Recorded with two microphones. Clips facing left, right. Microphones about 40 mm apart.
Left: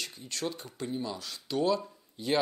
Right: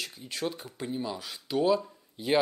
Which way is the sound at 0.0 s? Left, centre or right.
Centre.